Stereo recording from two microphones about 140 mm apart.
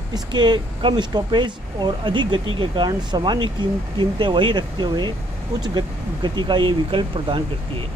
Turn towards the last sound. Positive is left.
turn(degrees=-40)  # may be behind; listen again after turning